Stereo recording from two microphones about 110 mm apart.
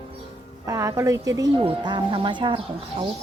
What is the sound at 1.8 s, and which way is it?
Speech, 45° right (ahead or behind).